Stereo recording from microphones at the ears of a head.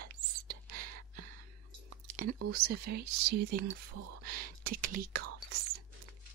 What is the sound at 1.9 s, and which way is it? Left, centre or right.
Speech, right.